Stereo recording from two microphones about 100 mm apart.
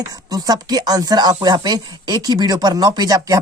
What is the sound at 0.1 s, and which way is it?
Speech, 40° right (ahead or behind).